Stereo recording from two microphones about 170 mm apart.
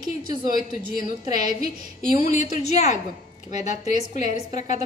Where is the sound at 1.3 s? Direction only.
25° right (ahead or behind).